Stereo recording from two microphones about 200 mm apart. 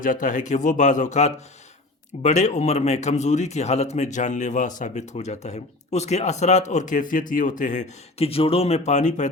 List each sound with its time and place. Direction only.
0.0 s speech: 40° left (ahead or behind)